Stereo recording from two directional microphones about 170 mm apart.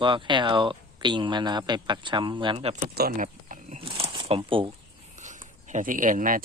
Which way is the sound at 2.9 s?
60° right (ahead or behind).